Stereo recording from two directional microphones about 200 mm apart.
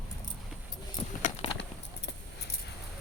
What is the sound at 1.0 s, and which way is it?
Keys jangling, 30° left (ahead or behind).